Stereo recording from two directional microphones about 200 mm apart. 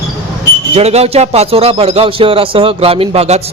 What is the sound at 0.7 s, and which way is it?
A man's voice, 30° right (ahead or behind).